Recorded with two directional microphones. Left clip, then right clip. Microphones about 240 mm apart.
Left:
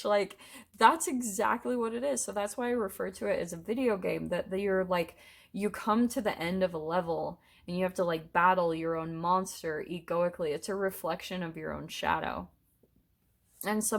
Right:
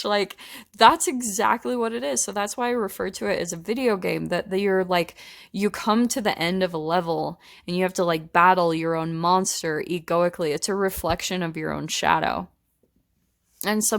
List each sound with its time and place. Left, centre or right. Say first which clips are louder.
0.0 s speech: right 5 dB; right
13.6 s a woman's voice: right 8 dB; right